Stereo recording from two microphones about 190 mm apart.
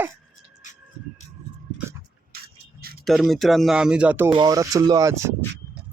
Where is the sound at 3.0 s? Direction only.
Centre (ahead or behind).